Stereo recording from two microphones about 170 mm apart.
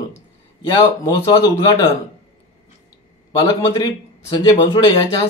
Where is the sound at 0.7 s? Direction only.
25° left (ahead or behind).